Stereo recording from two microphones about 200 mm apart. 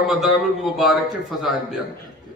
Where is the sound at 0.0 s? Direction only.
Centre (ahead or behind).